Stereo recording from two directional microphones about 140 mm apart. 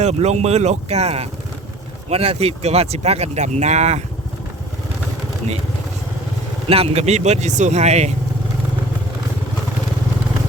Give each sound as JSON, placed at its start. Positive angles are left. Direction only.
{"t": 0.0, "sound": "speech", "side_deg": -50}
{"t": 6.7, "sound": "speech", "side_deg": -45}